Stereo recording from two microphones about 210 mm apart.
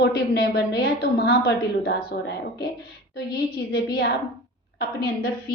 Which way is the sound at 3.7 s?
50° left (ahead or behind).